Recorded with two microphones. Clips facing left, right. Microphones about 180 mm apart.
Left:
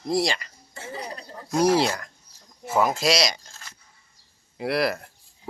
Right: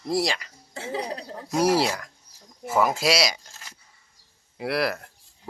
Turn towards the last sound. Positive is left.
turn(degrees=0)  # may be behind; listen again after turning